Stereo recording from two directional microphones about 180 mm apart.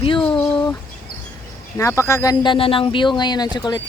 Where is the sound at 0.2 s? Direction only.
10° left (ahead or behind).